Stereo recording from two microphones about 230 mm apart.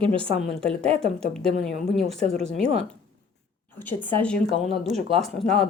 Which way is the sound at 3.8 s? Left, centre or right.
Centre.